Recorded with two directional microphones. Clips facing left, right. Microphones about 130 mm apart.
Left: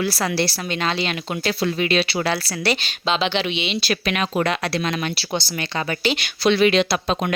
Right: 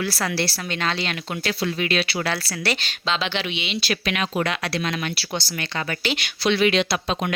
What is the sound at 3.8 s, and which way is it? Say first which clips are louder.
Speech: even; 40° left (ahead or behind).